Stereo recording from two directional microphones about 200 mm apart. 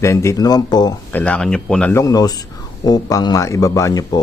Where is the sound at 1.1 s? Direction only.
5° left (ahead or behind).